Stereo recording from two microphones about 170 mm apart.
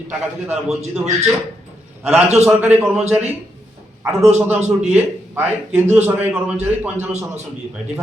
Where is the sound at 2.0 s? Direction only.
10° right (ahead or behind).